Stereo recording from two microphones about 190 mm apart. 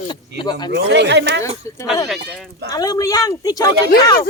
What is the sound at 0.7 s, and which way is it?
Speech, 65° right (ahead or behind).